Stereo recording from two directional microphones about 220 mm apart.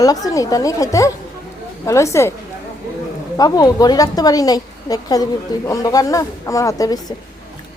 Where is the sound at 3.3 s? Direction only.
15° left (ahead or behind).